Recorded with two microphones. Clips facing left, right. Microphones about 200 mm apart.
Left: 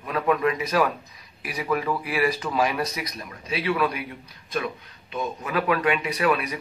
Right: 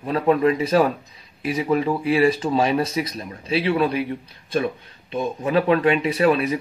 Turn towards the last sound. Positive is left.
turn(degrees=-25)  # may be behind; listen again after turning